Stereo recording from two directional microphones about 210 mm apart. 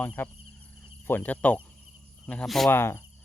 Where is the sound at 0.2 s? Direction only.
10° left (ahead or behind).